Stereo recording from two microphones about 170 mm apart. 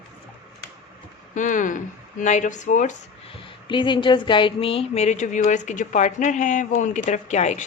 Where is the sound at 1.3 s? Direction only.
50° left (ahead or behind).